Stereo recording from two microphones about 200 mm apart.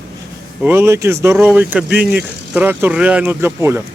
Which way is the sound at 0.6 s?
10° right (ahead or behind).